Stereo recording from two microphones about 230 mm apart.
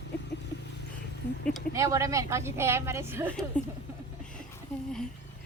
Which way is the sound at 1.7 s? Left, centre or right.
Centre.